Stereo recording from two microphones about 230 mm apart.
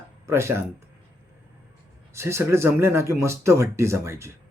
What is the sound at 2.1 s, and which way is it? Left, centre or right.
Speech, centre.